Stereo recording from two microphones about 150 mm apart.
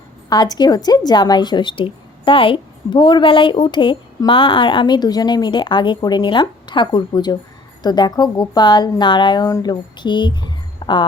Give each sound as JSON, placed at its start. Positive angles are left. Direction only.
{"t": 0.3, "sound": "a woman's voice", "side_deg": 25}
{"t": 10.8, "sound": "music", "side_deg": 25}